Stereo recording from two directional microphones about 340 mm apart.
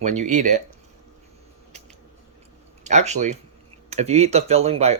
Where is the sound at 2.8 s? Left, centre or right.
Centre.